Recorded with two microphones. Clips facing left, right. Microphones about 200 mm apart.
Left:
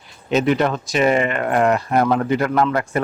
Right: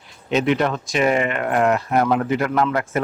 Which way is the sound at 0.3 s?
Centre (ahead or behind).